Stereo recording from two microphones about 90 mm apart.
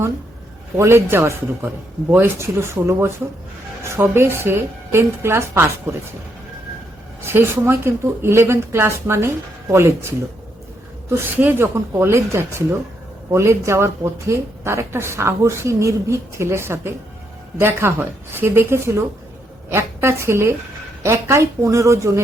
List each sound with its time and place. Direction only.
0.8 s speech: 25° right (ahead or behind)
7.2 s speech: 25° right (ahead or behind)